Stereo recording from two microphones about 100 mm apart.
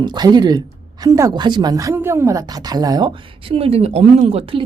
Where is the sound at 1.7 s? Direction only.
35° right (ahead or behind).